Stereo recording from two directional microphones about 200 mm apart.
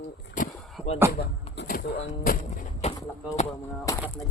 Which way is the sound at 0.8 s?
5° right (ahead or behind).